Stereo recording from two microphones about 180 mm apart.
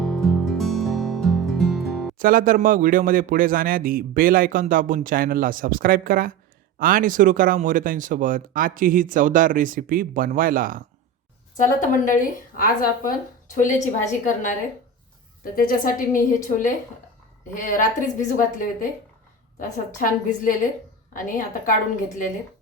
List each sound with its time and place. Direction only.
0.0 s music: centre (ahead or behind)
2.1 s speech: 50° right (ahead or behind)
11.6 s a woman's voice: 45° left (ahead or behind)
15.5 s a woman's voice: 50° left (ahead or behind)
21.1 s a woman's voice: 50° left (ahead or behind)